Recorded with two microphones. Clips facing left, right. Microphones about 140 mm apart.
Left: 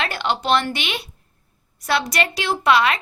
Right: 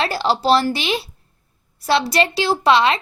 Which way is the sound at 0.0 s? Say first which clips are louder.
Right 4 dB; 35° right (ahead or behind).